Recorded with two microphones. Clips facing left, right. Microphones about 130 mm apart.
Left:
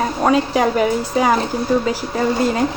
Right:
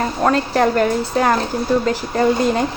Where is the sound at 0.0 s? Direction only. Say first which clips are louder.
Left 1 dB; 5° left (ahead or behind).